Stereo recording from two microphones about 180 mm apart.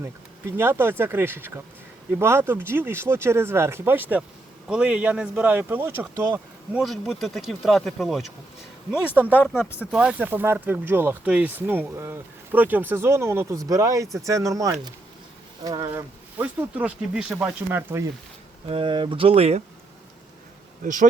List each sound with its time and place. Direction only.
0.0 s speech: 15° right (ahead or behind)
6.8 s speech: centre (ahead or behind); by 15.9 s 20° right (ahead or behind)
15.9 s speech: 10° right (ahead or behind)
18.7 s speech: 30° right (ahead or behind)
20.8 s speech: 45° right (ahead or behind)